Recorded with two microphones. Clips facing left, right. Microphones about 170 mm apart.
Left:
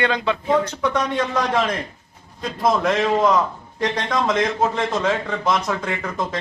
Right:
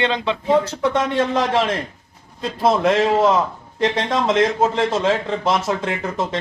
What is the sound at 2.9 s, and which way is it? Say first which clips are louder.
A man's voice: right 3 dB; 30° right (ahead or behind).